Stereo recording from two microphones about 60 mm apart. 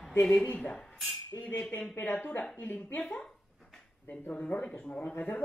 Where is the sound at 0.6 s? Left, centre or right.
Centre.